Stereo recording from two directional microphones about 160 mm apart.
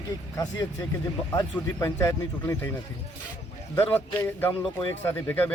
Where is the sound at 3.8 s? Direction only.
10° left (ahead or behind).